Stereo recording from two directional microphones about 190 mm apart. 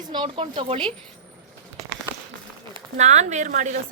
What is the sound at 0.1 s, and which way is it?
Speech, 25° right (ahead or behind).